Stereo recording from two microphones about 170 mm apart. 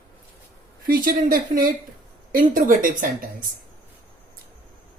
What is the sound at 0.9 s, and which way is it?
A woman's voice, 55° right (ahead or behind).